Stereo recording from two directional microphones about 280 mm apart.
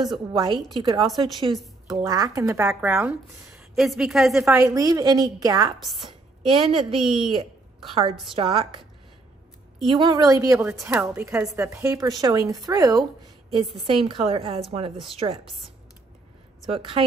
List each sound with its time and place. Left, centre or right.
0.0 s speech: centre
1.5 s a woman's voice: centre
2.0 s a woman's voice: centre
9.8 s a woman's voice: centre
16.7 s a woman's voice: centre